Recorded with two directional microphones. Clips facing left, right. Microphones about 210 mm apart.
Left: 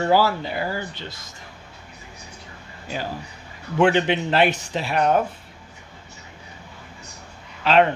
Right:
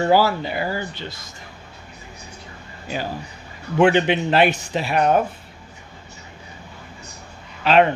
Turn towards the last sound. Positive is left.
turn(degrees=-10)  # may be behind; listen again after turning